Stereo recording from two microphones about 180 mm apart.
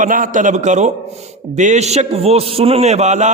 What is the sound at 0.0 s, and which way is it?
A man's voice, 50° right (ahead or behind).